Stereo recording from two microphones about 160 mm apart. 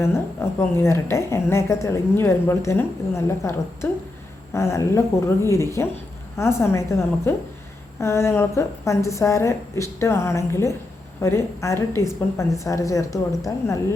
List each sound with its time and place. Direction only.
0.4 s a woman's voice: 15° left (ahead or behind)